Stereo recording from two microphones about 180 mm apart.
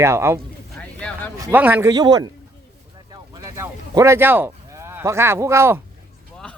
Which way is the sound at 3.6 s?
15° right (ahead or behind).